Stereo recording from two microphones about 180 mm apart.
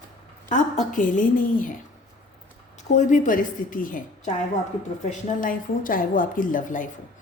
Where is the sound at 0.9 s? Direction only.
45° left (ahead or behind).